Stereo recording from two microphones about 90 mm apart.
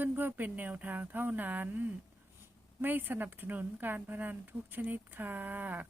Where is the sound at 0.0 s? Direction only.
20° right (ahead or behind).